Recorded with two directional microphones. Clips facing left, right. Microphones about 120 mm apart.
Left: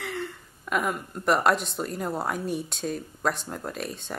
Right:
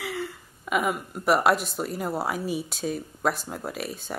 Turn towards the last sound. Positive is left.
turn(degrees=-5)  # may be behind; listen again after turning